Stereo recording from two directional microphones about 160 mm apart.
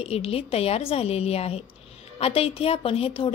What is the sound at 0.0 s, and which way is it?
A woman's voice, 40° left (ahead or behind).